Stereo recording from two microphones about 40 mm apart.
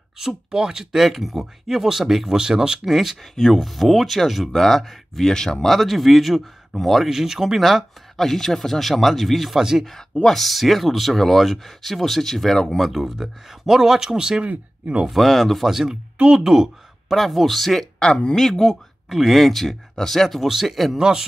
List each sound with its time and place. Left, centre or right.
0.2 s speech: centre
2.8 s speech: centre
3.2 s speech: centre
5.3 s speech: centre
5.7 s speech: centre
9.6 s speech: centre
9.8 s speech: centre
14.4 s speech: right
15.0 s speech: centre
17.1 s speech: centre
17.9 s speech: left
18.3 s speech: centre